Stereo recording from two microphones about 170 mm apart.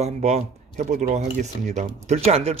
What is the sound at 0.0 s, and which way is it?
Speech, 40° right (ahead or behind).